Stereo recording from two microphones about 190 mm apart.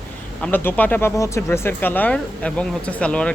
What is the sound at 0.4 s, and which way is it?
Speech, 10° left (ahead or behind).